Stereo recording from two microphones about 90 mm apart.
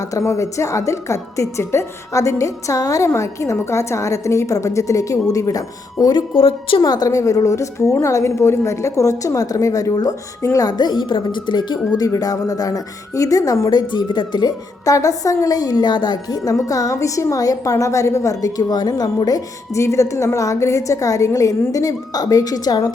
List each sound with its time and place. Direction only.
0.1 s a woman's voice: 35° left (ahead or behind)
6.3 s a woman's voice: 80° left
6.8 s a woman's voice: 45° left (ahead or behind)
10.7 s a woman's voice: 55° left (ahead or behind)
11.9 s a woman's voice: 45° left (ahead or behind)
14.9 s a woman's voice: 40° left (ahead or behind)